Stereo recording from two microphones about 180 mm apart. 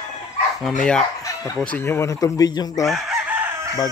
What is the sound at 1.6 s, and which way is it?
Speech, 10° left (ahead or behind).